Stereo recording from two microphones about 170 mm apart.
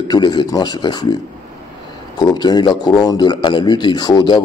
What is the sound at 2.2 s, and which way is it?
A man's voice, 25° left (ahead or behind).